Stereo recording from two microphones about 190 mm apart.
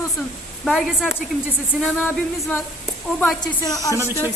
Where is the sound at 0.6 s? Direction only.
Centre (ahead or behind).